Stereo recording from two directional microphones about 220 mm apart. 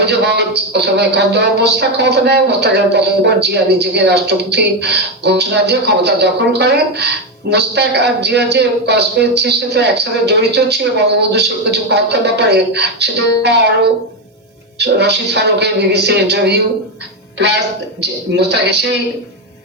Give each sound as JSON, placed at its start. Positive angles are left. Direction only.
{"t": 0.0, "sound": "speech", "side_deg": -50}
{"t": 14.8, "sound": "speech", "side_deg": -50}